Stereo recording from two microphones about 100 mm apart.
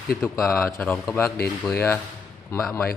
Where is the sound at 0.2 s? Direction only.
5° left (ahead or behind).